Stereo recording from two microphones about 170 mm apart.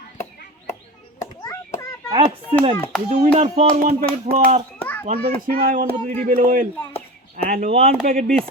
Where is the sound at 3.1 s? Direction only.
45° right (ahead or behind).